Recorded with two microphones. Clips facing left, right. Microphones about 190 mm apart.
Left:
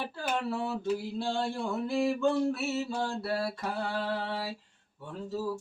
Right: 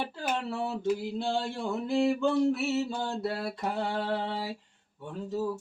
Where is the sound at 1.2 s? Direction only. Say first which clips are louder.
Right 1 dB; 20° right (ahead or behind).